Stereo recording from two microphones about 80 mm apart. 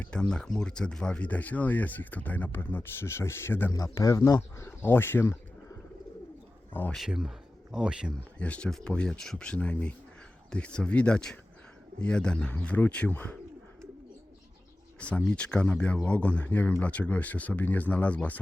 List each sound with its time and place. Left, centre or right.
0.1 s speech: centre; by 3.7 s left
3.7 s speech: left
6.9 s speech: centre
8.4 s speech: centre
14.9 s speech: centre